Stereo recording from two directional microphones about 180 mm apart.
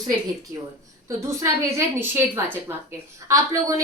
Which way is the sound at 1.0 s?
15° right (ahead or behind).